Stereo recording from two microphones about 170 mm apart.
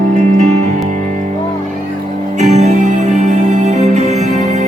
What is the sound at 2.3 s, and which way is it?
Music, 40° right (ahead or behind).